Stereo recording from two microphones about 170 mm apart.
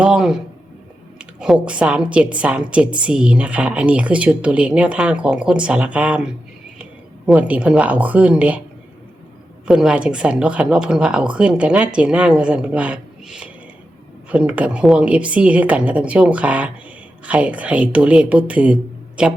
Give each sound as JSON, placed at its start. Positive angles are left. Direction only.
{"t": 0.0, "sound": "a woman's voice", "side_deg": -5}
{"t": 9.6, "sound": "a woman's voice", "side_deg": -5}